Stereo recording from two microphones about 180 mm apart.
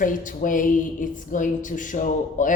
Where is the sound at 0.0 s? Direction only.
50° left (ahead or behind).